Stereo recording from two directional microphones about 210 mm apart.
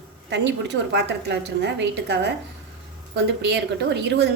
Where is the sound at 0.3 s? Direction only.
55° right (ahead or behind).